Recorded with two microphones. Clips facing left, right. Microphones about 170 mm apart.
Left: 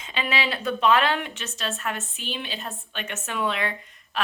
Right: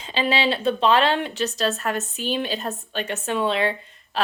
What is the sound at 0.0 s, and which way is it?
A woman's voice, 30° right (ahead or behind).